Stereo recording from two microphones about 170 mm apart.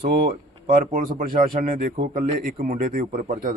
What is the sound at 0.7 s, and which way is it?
Speech, 50° right (ahead or behind).